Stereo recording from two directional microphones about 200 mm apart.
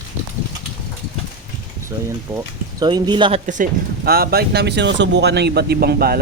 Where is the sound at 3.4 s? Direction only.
40° right (ahead or behind).